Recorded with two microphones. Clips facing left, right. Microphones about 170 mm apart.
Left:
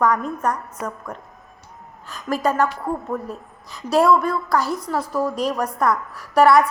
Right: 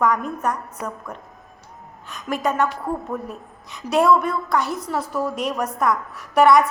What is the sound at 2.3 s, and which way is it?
A woman's voice, centre (ahead or behind).